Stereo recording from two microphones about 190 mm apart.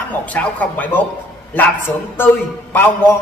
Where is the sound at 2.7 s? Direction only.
10° left (ahead or behind).